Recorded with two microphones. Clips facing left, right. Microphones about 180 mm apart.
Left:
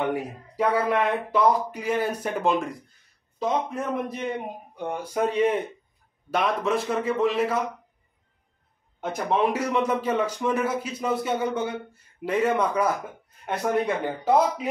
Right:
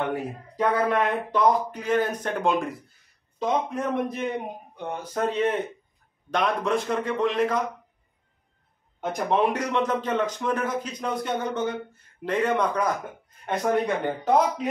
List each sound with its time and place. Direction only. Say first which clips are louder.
0.0 s a man's voice: left 1 dB; 15° left (ahead or behind)
9.0 s a man's voice: right 1 dB; centre (ahead or behind)